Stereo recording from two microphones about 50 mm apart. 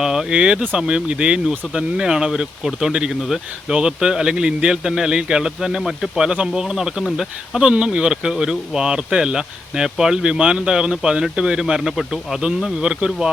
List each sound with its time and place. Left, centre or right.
0.0 s speech: centre
7.6 s speech: right